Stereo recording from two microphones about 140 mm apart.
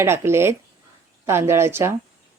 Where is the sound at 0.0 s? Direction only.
20° right (ahead or behind).